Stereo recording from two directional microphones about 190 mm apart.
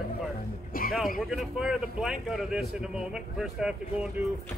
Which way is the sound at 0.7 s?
50° left (ahead or behind).